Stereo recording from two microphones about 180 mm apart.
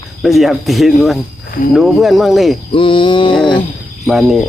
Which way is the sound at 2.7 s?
30° left (ahead or behind).